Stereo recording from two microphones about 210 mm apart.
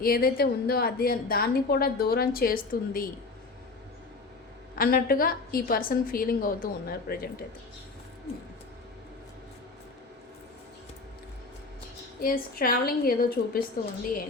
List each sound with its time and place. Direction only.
0.0 s a woman's voice: 45° left (ahead or behind)
4.7 s a woman's voice: 45° left (ahead or behind)
12.2 s a woman's voice: 45° left (ahead or behind)